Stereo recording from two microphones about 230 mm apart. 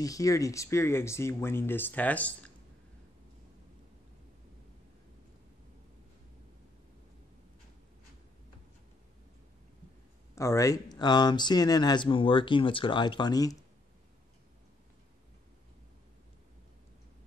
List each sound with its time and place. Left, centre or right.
0.0 s speech: centre
10.3 s speech: centre